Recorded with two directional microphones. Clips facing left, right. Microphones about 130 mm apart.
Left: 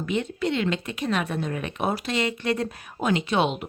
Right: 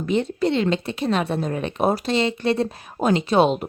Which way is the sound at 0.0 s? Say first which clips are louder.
Right 5 dB; 35° right (ahead or behind).